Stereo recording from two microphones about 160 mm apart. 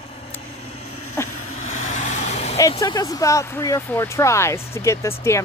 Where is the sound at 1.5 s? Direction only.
45° left (ahead or behind).